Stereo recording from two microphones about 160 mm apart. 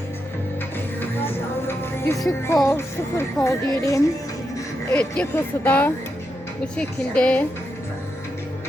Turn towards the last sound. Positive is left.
turn(degrees=5)  # may be behind; listen again after turning